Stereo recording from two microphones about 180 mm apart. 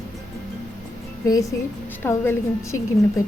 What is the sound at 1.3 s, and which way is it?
Speech, 15° left (ahead or behind).